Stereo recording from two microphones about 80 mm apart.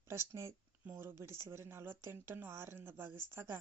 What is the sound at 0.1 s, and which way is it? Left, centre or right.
Speech, right.